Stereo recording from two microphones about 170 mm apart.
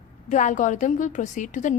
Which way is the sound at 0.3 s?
50° left (ahead or behind).